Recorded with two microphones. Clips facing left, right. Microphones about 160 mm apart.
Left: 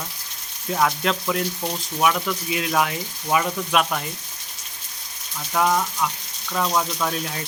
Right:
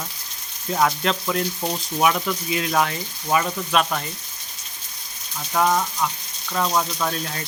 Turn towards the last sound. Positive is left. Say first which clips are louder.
# even
turn(degrees=5)  # may be behind; listen again after turning